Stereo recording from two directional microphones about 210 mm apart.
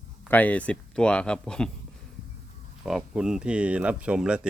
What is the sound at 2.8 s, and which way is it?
Speech, 5° right (ahead or behind).